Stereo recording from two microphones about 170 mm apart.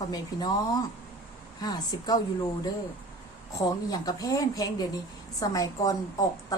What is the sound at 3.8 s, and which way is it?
A woman's voice, 20° left (ahead or behind).